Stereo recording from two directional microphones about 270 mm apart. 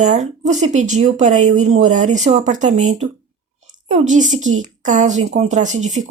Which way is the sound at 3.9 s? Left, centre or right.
Right.